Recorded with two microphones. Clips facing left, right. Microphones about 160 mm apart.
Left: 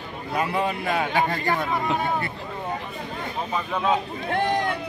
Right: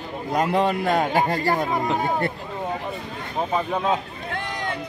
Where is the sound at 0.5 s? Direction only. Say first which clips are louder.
Right 6 dB; 70° right (ahead or behind).